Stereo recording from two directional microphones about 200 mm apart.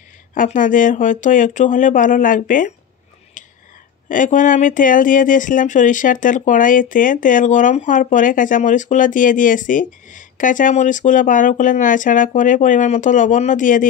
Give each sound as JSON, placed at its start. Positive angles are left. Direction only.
{"t": 0.3, "sound": "speech", "side_deg": 40}
{"t": 4.1, "sound": "speech", "side_deg": 40}